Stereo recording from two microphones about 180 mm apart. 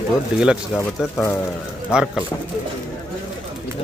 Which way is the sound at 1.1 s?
10° left (ahead or behind).